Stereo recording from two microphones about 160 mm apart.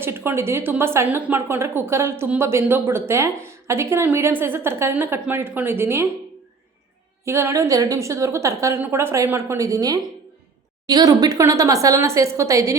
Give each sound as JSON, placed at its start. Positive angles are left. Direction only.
{"t": 0.3, "sound": "a woman's voice", "side_deg": -15}
{"t": 7.3, "sound": "a woman's voice", "side_deg": -15}